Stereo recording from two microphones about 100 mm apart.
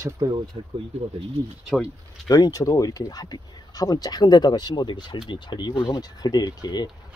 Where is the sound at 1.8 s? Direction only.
35° left (ahead or behind).